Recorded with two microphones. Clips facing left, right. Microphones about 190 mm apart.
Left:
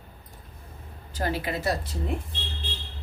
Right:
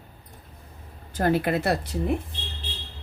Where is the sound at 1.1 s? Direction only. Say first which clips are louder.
Right 6 dB; 55° right (ahead or behind).